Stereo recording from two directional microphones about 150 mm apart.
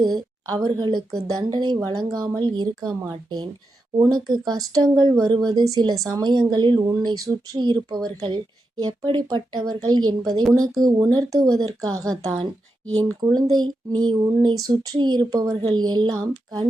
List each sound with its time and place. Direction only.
0.0 s a woman's voice: 25° right (ahead or behind)